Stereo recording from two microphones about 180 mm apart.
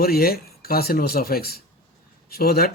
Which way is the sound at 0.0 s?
55° left (ahead or behind).